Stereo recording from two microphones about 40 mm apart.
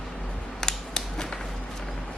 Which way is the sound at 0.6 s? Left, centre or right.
Centre.